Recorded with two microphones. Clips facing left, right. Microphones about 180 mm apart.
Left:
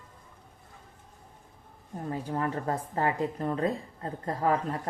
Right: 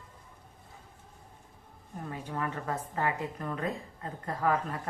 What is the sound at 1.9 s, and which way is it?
A woman's voice, 35° left (ahead or behind).